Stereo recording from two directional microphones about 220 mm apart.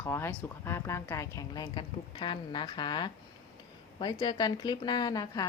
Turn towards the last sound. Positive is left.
turn(degrees=15)  # may be behind; listen again after turning